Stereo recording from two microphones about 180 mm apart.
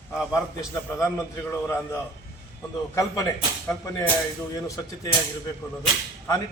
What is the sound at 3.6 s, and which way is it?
Speech, 15° left (ahead or behind).